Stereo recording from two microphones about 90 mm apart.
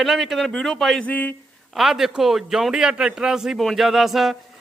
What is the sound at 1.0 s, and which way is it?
Speech, 20° left (ahead or behind).